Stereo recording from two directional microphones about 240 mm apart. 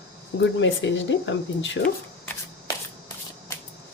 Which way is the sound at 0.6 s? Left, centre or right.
Left.